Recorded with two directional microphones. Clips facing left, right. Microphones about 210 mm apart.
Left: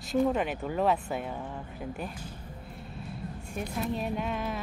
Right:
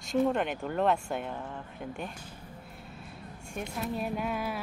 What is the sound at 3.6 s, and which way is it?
Speech, 5° right (ahead or behind).